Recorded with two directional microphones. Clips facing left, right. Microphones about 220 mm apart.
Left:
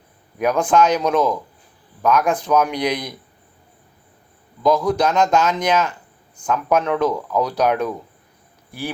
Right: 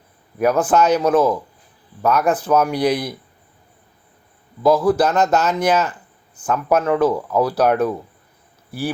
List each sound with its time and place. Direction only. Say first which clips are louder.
0.3 s speech: right 1 dB; 5° right (ahead or behind)
4.6 s speech: right 2 dB; 5° right (ahead or behind)